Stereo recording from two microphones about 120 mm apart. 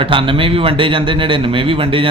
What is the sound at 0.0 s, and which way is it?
A man's voice, 45° right (ahead or behind).